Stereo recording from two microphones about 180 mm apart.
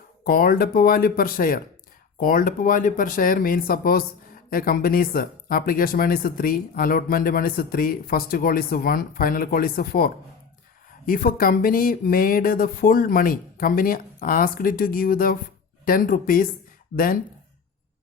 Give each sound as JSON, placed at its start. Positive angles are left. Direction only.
{"t": 0.3, "sound": "speech", "side_deg": 55}